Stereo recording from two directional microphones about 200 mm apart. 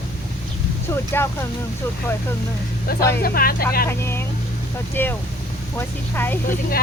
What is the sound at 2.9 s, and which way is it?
Speech, 50° left (ahead or behind).